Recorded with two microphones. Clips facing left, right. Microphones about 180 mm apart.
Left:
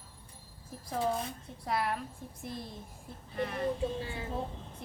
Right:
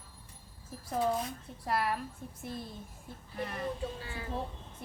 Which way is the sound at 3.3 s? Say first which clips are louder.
Left 4 dB; centre (ahead or behind).